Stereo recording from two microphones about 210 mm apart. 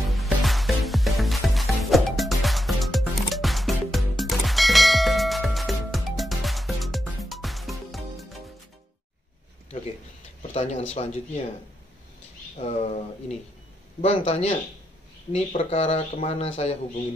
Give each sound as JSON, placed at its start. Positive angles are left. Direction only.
{"t": 0.1, "sound": "music", "side_deg": 0}
{"t": 10.5, "sound": "speech", "side_deg": 30}
{"t": 12.5, "sound": "speech", "side_deg": 30}
{"t": 14.0, "sound": "speech", "side_deg": 30}